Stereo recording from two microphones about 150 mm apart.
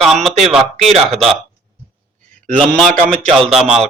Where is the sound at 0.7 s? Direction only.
45° right (ahead or behind).